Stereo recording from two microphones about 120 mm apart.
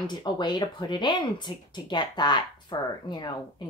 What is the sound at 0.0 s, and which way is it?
Speech, 40° left (ahead or behind).